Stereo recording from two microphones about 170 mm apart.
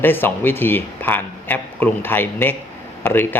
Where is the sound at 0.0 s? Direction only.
10° left (ahead or behind).